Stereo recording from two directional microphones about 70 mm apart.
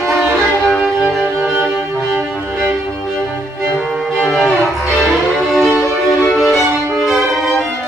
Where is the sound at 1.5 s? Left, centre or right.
Right.